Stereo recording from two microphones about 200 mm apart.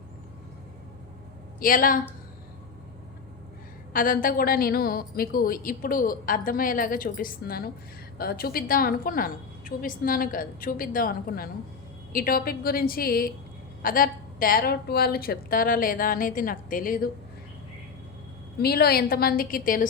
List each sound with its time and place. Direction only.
1.5 s a woman's voice: 45° left (ahead or behind)
3.9 s a woman's voice: 45° left (ahead or behind)
18.6 s a woman's voice: 50° left (ahead or behind)